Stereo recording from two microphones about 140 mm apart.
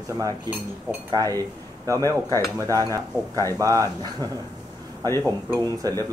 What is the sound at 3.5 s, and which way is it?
Speech, 25° right (ahead or behind).